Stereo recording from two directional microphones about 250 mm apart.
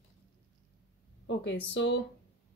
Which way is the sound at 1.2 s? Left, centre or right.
Left.